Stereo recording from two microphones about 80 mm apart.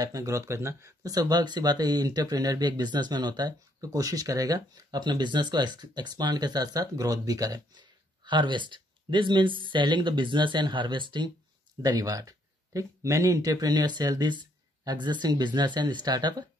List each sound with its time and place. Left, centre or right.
0.0 s speech: right
11.8 s speech: right